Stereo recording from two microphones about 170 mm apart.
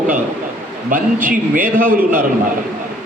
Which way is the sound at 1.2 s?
55° right (ahead or behind).